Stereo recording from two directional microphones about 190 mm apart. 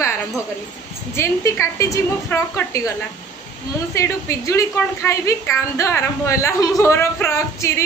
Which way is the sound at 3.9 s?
15° left (ahead or behind).